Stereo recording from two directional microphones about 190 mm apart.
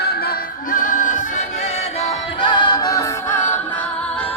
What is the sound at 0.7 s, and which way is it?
Music, 45° left (ahead or behind).